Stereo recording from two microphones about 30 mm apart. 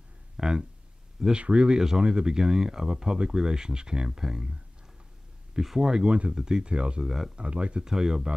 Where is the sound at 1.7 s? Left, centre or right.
Right.